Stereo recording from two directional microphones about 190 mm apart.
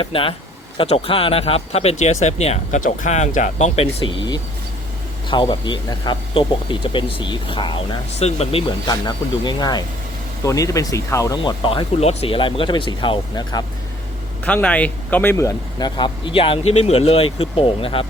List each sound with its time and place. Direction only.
0.0 s speech: 30° left (ahead or behind)
5.3 s speech: 25° left (ahead or behind)
14.4 s speech: 5° left (ahead or behind); by 18.0 s 30° left (ahead or behind)